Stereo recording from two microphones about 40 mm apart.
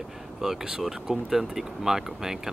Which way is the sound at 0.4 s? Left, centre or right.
Centre.